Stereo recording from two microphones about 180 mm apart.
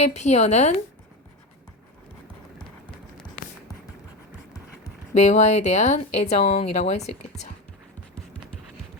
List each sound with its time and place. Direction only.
0.0 s speech: 40° left (ahead or behind)
5.1 s speech: 40° left (ahead or behind)